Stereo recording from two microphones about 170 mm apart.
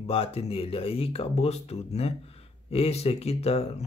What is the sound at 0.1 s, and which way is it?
Speech, 35° left (ahead or behind).